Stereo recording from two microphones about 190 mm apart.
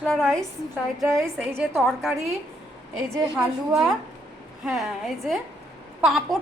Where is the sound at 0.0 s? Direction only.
5° left (ahead or behind).